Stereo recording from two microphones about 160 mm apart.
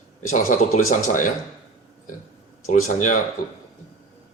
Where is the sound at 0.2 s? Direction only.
55° left (ahead or behind).